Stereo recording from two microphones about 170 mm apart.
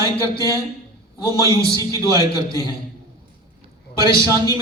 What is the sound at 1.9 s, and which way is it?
Speech, 20° right (ahead or behind).